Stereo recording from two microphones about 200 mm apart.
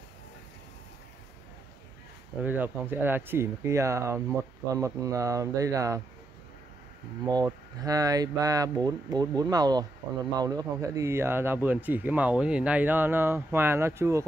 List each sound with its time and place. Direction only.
2.4 s speech: 10° right (ahead or behind)
7.2 s speech: 20° right (ahead or behind)